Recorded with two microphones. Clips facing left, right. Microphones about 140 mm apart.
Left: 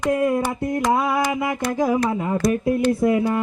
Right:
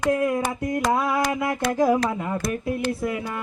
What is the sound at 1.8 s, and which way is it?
Speech, 15° left (ahead or behind).